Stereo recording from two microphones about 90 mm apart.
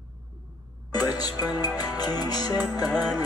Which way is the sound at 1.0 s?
45° left (ahead or behind).